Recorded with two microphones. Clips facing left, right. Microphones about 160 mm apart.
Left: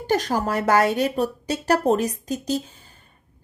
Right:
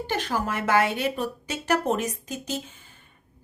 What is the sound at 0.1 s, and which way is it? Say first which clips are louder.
A woman's voice: left 7 dB; 40° left (ahead or behind).